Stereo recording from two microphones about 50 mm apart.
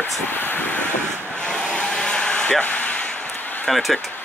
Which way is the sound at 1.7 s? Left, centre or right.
Centre.